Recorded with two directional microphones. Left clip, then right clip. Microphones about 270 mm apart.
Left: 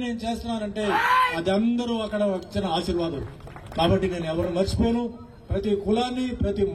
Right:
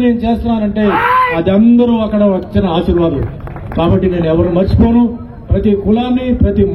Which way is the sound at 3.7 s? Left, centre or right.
Left.